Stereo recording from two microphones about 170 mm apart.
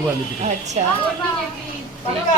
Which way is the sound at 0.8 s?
45° right (ahead or behind).